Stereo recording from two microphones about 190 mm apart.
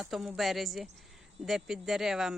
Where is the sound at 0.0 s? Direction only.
Centre (ahead or behind).